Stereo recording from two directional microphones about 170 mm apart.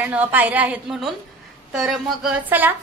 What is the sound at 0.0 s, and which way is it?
A woman's voice, 10° right (ahead or behind).